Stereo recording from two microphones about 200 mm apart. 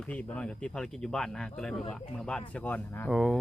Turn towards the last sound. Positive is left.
turn(degrees=-5)  # may be behind; listen again after turning